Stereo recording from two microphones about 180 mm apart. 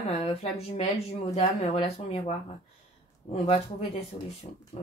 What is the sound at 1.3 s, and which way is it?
Speech, 35° left (ahead or behind).